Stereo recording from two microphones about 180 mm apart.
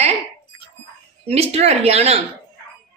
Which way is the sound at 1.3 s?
35° right (ahead or behind).